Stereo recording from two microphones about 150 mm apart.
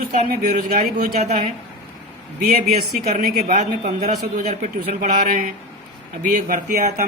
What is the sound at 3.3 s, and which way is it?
A man's voice, 55° right (ahead or behind).